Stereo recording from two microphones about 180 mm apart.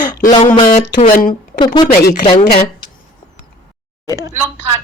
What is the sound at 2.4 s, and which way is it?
Speech, 60° left (ahead or behind).